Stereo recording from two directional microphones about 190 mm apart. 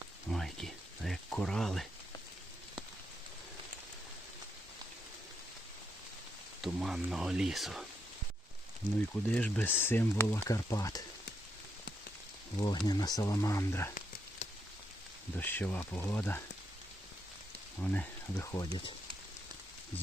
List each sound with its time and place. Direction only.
0.3 s a sound: centre (ahead or behind)
6.6 s speech: 5° right (ahead or behind)
8.8 s speech: 45° right (ahead or behind)
9.3 s speech: 10° left (ahead or behind)
12.5 s speech: 25° left (ahead or behind)
15.4 s speech: 10° left (ahead or behind)
17.7 s speech: 10° left (ahead or behind)